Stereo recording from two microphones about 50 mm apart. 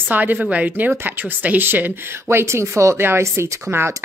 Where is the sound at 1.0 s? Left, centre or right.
Right.